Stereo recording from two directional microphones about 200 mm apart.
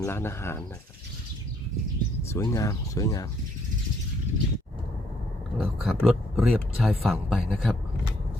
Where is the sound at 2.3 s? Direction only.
15° left (ahead or behind).